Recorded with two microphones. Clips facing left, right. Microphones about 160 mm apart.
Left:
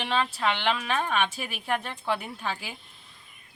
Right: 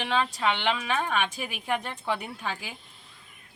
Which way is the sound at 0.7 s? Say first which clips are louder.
Even; 10° right (ahead or behind).